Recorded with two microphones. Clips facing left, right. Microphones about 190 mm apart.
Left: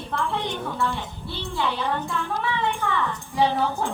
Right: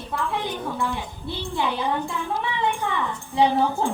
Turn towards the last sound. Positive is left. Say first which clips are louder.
# right 2 dB
turn(degrees=-15)  # may be behind; listen again after turning